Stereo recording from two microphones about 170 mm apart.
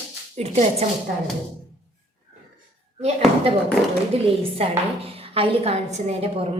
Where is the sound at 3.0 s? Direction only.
40° right (ahead or behind).